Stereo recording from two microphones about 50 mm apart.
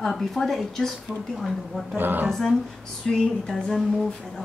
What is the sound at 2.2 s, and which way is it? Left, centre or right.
A woman's voice, centre.